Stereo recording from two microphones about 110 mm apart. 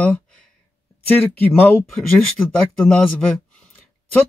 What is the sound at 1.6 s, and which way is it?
Speech, 15° left (ahead or behind).